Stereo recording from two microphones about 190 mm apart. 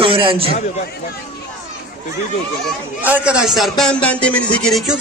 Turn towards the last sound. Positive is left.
turn(degrees=0)  # may be behind; listen again after turning